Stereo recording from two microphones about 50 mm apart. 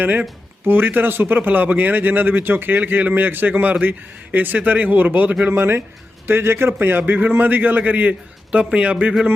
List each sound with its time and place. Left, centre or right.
0.0 s a man's voice: right
5.5 s a man's voice: right